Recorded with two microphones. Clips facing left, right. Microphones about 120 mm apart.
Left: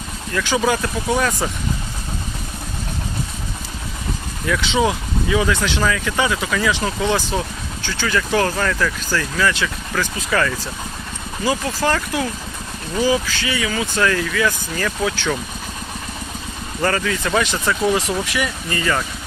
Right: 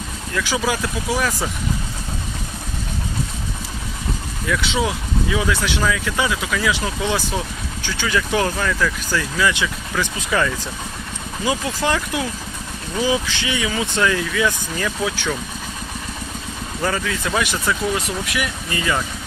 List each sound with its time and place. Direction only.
0.3 s speech: centre (ahead or behind)
4.4 s speech: centre (ahead or behind)
16.8 s speech: centre (ahead or behind)